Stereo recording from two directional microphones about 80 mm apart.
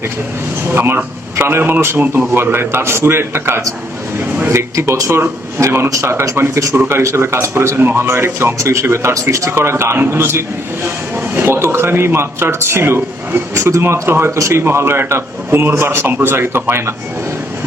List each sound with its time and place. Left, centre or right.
0.7 s a man's voice: right
4.2 s a sound: right
4.7 s a man's voice: right